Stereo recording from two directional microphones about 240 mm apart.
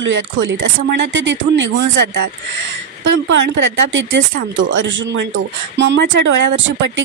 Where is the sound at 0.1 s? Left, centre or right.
Right.